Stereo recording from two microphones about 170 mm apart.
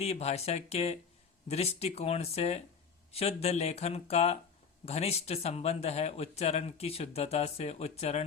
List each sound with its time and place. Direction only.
0.0 s a man's voice: 40° left (ahead or behind)